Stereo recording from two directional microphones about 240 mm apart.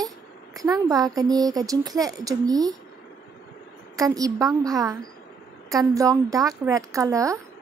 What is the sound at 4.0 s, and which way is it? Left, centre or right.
A woman's voice, centre.